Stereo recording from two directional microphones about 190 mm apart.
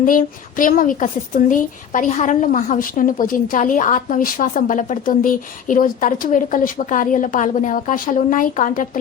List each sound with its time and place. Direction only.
0.0 s speech: 45° left (ahead or behind)